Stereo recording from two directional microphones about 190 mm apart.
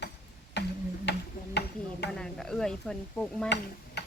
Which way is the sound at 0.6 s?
65° left (ahead or behind).